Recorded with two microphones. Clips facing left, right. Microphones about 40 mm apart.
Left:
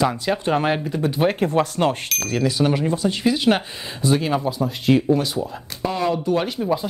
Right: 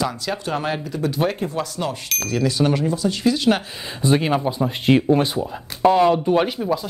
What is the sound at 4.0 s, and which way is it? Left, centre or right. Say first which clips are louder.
Speech: right 1 dB; right.